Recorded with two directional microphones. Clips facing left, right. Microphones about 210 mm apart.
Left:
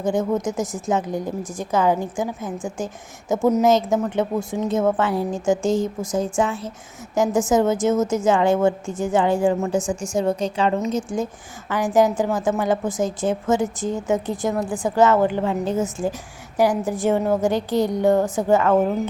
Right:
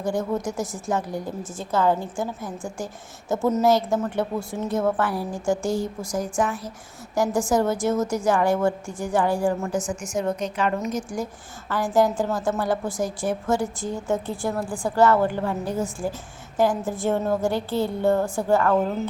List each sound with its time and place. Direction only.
0.0 s a woman's voice: 20° left (ahead or behind)